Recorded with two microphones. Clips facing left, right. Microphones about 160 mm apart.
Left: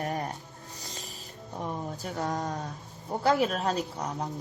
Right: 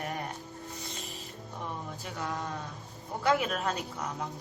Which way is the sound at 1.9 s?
40° left (ahead or behind).